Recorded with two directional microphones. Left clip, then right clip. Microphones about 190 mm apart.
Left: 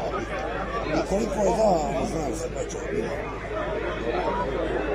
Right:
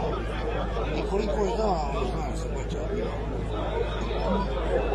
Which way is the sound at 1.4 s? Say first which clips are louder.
Left 8 dB; 30° left (ahead or behind).